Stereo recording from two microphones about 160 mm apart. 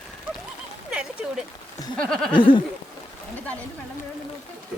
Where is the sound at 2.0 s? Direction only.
5° left (ahead or behind).